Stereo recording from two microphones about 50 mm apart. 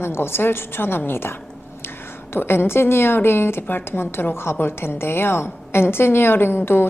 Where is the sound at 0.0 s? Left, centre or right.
Left.